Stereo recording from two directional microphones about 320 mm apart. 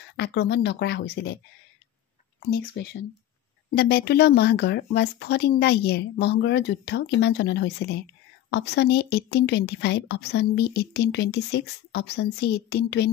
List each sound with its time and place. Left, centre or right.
0.1 s a woman's voice: left
2.4 s a woman's voice: left